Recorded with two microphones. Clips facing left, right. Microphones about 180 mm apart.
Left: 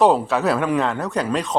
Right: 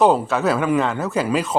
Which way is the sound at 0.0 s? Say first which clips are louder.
Even; centre (ahead or behind).